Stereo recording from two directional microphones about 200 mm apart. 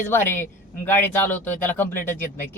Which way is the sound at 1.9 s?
40° left (ahead or behind).